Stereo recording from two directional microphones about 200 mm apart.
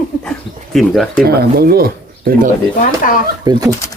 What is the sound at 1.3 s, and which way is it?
Speech, 50° right (ahead or behind).